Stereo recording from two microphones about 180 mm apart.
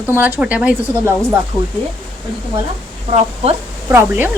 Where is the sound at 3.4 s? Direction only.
35° right (ahead or behind).